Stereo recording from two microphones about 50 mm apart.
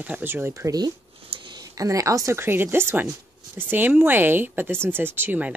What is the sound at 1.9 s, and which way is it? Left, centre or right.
Speech, right.